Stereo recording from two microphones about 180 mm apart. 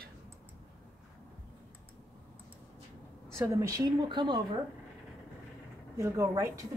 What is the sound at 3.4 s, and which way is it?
Speech, 15° right (ahead or behind).